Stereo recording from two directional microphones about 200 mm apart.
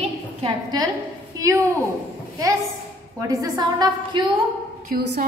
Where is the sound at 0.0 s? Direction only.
25° right (ahead or behind).